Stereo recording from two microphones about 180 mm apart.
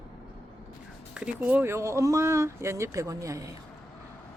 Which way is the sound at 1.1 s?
5° right (ahead or behind).